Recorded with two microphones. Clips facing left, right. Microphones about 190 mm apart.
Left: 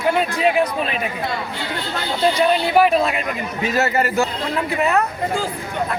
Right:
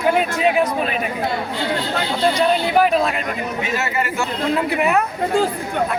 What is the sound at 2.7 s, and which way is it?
Speech, centre (ahead or behind).